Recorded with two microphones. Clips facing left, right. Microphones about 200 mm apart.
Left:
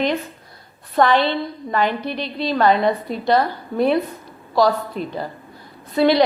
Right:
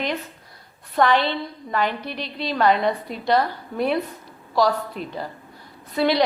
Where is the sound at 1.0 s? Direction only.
35° left (ahead or behind).